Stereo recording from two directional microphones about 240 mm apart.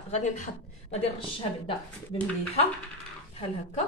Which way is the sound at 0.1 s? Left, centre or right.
Left.